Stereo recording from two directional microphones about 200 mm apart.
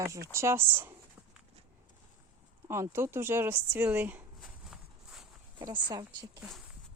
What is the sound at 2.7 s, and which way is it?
Speech, 15° right (ahead or behind).